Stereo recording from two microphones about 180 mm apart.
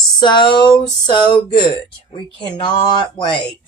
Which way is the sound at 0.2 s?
25° left (ahead or behind).